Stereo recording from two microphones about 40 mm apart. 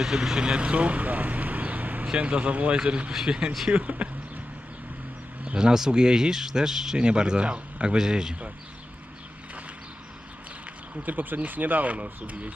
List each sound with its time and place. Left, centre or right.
0.0 s vehicle: centre; by 2.0 s right
2.1 s speech: right
2.7 s speech: right
3.7 s speech: right
5.5 s speech: centre
6.9 s speech: right
10.9 s speech: right